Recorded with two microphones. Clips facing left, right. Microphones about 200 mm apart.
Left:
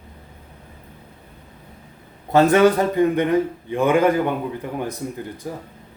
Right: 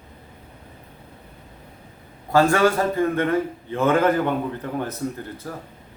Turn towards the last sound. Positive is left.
turn(degrees=15)  # may be behind; listen again after turning